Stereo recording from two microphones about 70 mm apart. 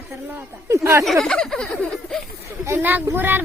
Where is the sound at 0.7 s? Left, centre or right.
Right.